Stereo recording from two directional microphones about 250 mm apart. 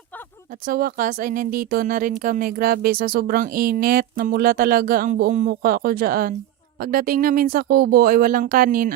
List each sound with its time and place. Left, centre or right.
0.6 s speech: right